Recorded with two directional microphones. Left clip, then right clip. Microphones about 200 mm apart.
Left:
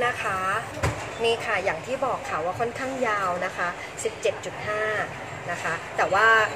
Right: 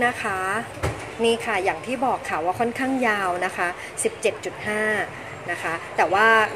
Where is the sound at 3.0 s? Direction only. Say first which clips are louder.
Right 2 dB; 35° right (ahead or behind).